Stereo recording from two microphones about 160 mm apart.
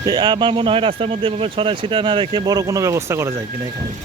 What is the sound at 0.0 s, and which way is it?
Speech, 25° right (ahead or behind).